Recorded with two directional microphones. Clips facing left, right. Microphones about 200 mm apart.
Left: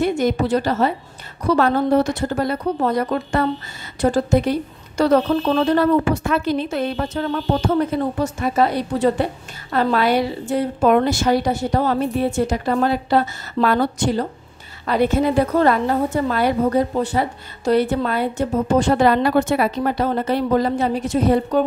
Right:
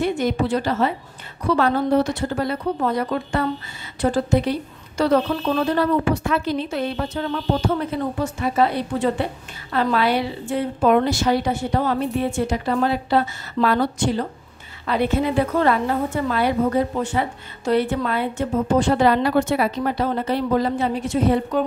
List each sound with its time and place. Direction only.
0.0 s a woman's voice: 40° left (ahead or behind)
8.2 s a woman's voice: 40° left (ahead or behind)